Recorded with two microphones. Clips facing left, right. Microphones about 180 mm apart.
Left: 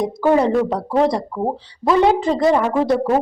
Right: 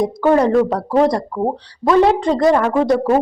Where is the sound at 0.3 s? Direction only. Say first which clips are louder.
Right 2 dB; centre (ahead or behind).